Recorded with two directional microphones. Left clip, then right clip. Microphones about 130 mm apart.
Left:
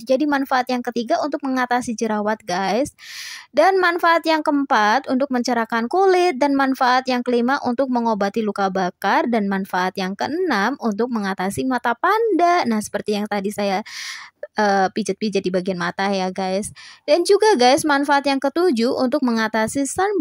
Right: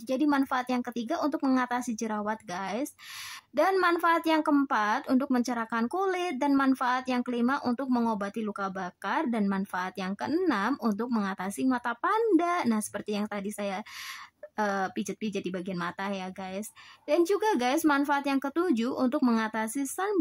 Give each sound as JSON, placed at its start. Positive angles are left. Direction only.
{"t": 0.1, "sound": "speech", "side_deg": 40}